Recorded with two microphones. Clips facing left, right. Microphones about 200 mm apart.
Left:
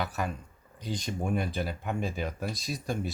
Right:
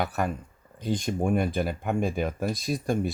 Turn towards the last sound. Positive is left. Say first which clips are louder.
# right 6 dB
turn(degrees=-50)  # may be behind; listen again after turning